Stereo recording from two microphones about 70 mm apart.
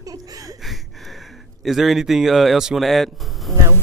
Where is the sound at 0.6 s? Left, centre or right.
Centre.